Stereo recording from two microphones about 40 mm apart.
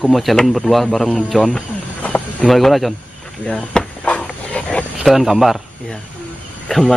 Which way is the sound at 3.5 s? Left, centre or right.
Left.